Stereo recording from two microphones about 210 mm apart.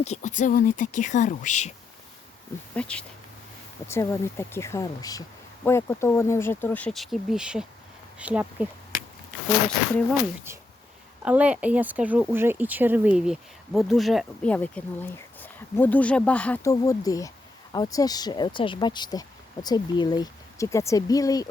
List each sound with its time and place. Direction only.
0.0 s speech: 35° left (ahead or behind)
2.7 s speech: 5° left (ahead or behind)
11.2 s speech: 5° right (ahead or behind); by 21.5 s 15° left (ahead or behind)